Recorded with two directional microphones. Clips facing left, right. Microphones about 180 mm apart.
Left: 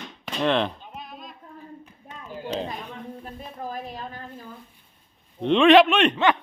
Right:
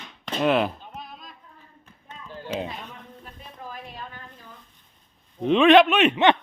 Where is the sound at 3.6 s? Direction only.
40° left (ahead or behind).